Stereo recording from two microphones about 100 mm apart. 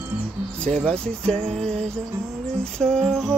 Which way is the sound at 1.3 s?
90° right.